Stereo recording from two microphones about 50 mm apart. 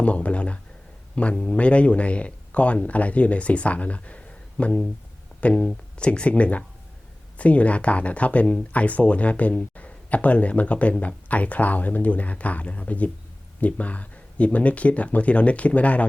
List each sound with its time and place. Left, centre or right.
0.0 s speech: left